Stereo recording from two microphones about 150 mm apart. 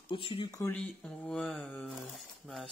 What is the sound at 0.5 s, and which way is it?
Mantra, 20° left (ahead or behind).